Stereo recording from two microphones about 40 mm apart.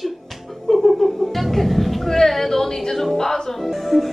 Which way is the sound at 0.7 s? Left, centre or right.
Centre.